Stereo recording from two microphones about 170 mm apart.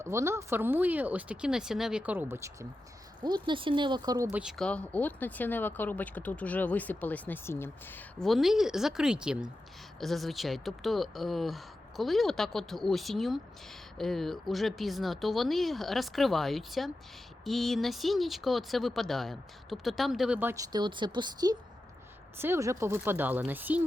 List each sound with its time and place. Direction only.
0.0 s speech: 15° right (ahead or behind)
3.2 s speech: 25° right (ahead or behind)
4.3 s speech: 5° right (ahead or behind); by 8.3 s 10° left (ahead or behind)
8.3 s speech: centre (ahead or behind)
20.7 s speech: 25° right (ahead or behind)
22.4 s speech: 15° right (ahead or behind)